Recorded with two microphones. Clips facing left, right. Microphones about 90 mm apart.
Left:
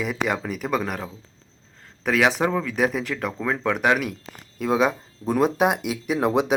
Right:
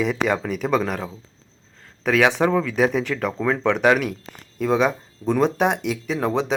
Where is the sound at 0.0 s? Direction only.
5° left (ahead or behind).